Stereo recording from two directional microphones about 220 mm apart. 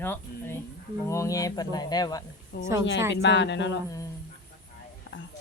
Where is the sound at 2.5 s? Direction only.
50° left (ahead or behind).